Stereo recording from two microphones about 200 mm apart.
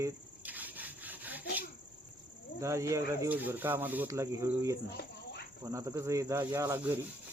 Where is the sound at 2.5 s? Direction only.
15° right (ahead or behind).